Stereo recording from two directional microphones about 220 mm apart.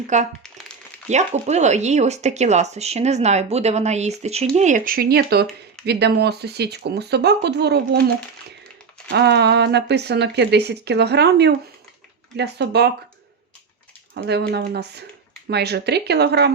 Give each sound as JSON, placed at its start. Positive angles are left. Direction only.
{"t": 0.1, "sound": "speech", "side_deg": -35}
{"t": 9.0, "sound": "speech", "side_deg": -50}
{"t": 14.1, "sound": "speech", "side_deg": -45}